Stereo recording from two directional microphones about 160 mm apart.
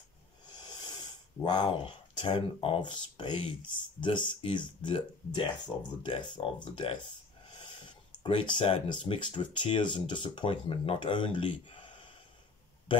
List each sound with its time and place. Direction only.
0.5 s speech: 30° left (ahead or behind)
8.2 s speech: 30° left (ahead or behind)